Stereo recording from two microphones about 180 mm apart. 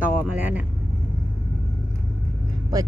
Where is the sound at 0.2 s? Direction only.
10° right (ahead or behind).